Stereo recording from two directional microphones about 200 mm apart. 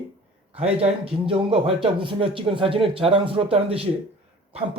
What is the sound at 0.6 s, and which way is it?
Speech, 30° right (ahead or behind).